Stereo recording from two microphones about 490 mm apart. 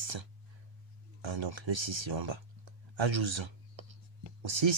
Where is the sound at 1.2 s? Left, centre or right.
Right.